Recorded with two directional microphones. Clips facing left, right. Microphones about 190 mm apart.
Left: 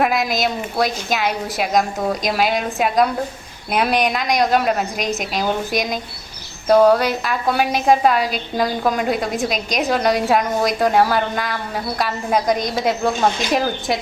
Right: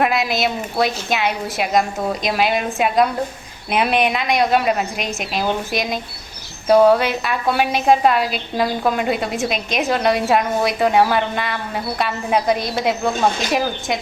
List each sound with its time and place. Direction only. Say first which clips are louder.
0.0 s speech: even; centre (ahead or behind)